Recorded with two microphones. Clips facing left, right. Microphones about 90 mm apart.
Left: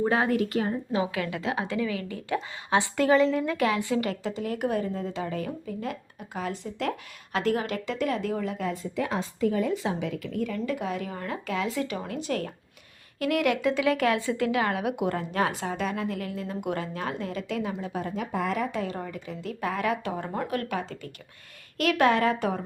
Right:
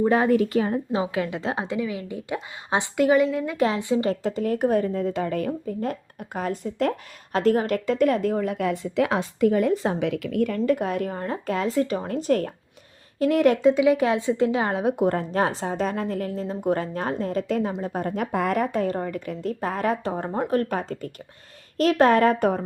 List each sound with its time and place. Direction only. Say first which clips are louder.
0.9 s a woman's voice: right 3 dB; 25° right (ahead or behind)
1.6 s a woman's voice: right 1 dB; 20° right (ahead or behind)
2.9 s a woman's voice: right 3 dB; 10° right (ahead or behind)
3.6 s a woman's voice: right 7 dB; 25° right (ahead or behind)
4.0 s a woman's voice: right 6 dB; 40° right (ahead or behind); by 5.5 s 55° right (ahead or behind)
5.5 s a woman's voice: right 6 dB; 40° right (ahead or behind); by 9.7 s 60° right (ahead or behind)
9.7 s a woman's voice: right 4 dB; 40° right (ahead or behind)
10.0 s a woman's voice: right 7 dB; 65° right (ahead or behind); by 12.5 s 40° right (ahead or behind)
13.1 s a woman's voice: right 6 dB; 30° right (ahead or behind)
13.7 s a woman's voice: right 5 dB; 15° right (ahead or behind); by 22.6 s 45° right (ahead or behind)